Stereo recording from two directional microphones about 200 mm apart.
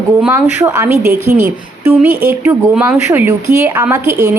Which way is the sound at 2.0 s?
5° right (ahead or behind).